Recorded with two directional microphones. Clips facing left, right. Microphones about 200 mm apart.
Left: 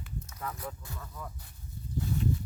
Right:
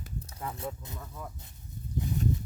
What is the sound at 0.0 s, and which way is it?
Speech, 35° right (ahead or behind).